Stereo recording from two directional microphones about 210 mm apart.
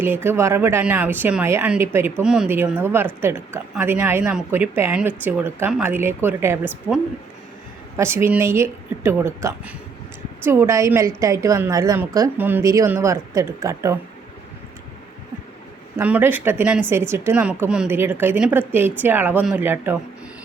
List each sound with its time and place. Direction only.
0.0 s a woman's voice: 10° right (ahead or behind)
16.0 s a woman's voice: 10° right (ahead or behind)